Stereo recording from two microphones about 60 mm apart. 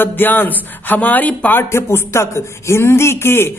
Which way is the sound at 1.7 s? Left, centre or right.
Left.